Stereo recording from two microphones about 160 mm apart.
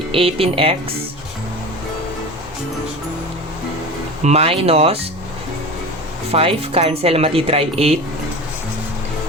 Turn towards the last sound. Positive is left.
turn(degrees=-40)  # may be behind; listen again after turning